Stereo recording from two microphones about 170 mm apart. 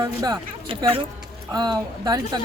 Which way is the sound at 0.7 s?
30° right (ahead or behind).